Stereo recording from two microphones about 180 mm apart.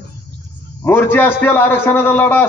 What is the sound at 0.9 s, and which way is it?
A man's voice, 10° left (ahead or behind).